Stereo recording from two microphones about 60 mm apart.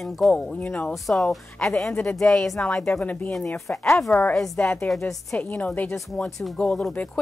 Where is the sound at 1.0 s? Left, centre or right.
Centre.